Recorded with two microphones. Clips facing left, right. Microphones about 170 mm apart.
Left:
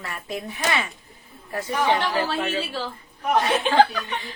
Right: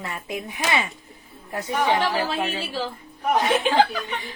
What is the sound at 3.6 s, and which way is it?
Speech, 10° right (ahead or behind).